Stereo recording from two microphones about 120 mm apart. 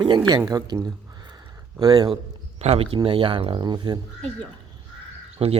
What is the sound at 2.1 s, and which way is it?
A man's voice, 55° right (ahead or behind).